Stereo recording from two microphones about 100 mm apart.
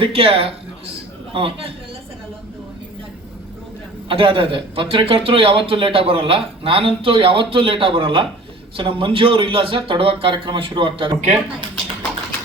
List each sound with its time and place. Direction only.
0.0 s speech: 70° right (ahead or behind)
4.1 s speech: 65° right (ahead or behind)